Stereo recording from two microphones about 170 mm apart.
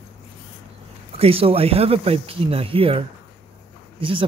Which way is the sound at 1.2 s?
35° right (ahead or behind).